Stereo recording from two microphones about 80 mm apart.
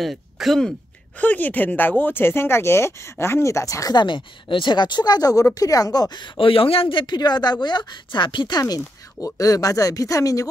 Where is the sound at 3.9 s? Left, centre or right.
Left.